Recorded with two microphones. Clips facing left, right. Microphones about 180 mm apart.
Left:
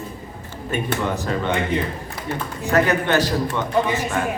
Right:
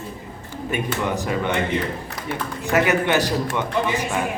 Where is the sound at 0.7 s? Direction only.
15° right (ahead or behind).